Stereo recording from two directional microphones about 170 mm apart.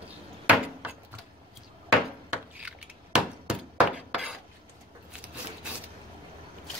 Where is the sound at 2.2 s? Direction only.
5° right (ahead or behind).